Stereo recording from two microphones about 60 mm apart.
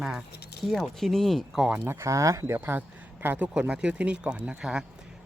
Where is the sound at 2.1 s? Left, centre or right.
Right.